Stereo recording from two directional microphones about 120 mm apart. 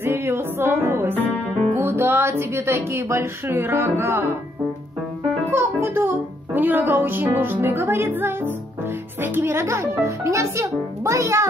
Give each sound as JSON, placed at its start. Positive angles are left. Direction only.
{"t": 0.0, "sound": "music", "side_deg": -20}
{"t": 5.5, "sound": "music", "side_deg": -20}